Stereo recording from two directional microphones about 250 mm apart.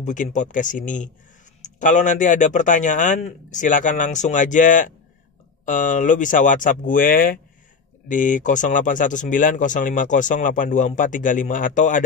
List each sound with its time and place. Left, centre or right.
0.0 s speech: left